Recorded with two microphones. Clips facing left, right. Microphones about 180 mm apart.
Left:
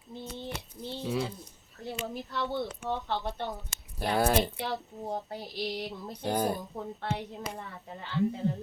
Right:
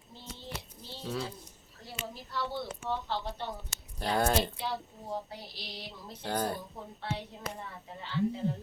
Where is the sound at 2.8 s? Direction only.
60° left (ahead or behind).